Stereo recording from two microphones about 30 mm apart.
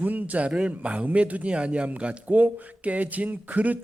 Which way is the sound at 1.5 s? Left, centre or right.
Right.